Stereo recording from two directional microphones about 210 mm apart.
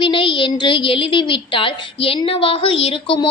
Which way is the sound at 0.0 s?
25° left (ahead or behind).